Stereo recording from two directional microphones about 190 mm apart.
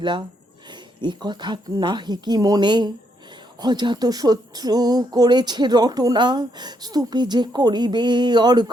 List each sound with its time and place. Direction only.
0.0 s speech: 25° right (ahead or behind)